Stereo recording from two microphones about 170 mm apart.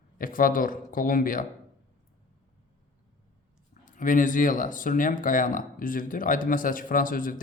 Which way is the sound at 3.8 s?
50° left (ahead or behind).